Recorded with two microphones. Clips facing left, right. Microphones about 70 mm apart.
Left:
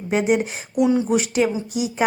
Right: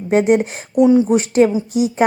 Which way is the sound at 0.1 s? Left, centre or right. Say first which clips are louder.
Right 6 dB; right.